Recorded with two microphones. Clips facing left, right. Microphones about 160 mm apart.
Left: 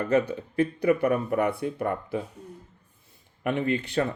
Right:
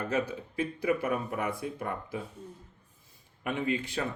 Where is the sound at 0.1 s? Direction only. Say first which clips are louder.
Left 7 dB; 60° left (ahead or behind).